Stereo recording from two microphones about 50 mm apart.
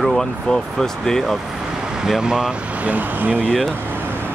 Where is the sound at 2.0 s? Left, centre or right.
Centre.